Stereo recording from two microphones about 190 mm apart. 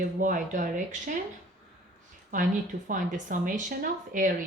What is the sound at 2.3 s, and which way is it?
Speech, 45° right (ahead or behind).